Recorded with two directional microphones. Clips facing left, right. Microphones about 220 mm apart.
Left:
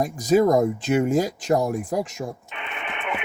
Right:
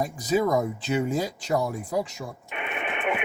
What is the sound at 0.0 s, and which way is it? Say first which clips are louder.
Speech: left 6 dB; 45° left (ahead or behind).